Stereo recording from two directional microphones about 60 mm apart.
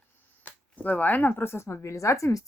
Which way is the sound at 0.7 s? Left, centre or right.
Left.